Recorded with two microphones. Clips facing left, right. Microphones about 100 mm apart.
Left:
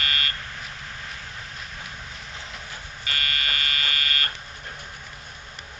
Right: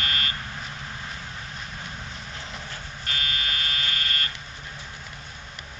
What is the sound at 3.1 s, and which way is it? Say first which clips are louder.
Fire alarm: left 2 dB; 60° left (ahead or behind).